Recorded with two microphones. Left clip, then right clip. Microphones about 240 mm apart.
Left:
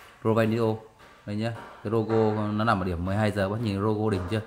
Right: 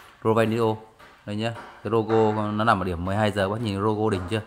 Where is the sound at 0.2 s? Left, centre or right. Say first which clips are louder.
Right 3 dB; right.